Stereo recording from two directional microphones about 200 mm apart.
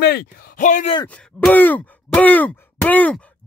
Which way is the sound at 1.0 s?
5° left (ahead or behind).